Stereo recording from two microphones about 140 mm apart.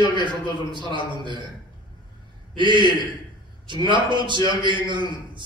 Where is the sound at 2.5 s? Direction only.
35° right (ahead or behind).